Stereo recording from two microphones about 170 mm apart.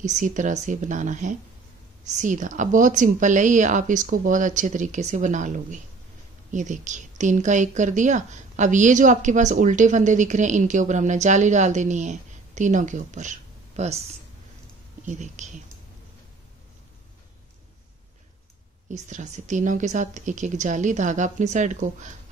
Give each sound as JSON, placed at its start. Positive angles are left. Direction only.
{"t": 0.0, "sound": "a woman's voice", "side_deg": -50}
{"t": 15.0, "sound": "a woman's voice", "side_deg": -45}
{"t": 18.9, "sound": "a woman's voice", "side_deg": -45}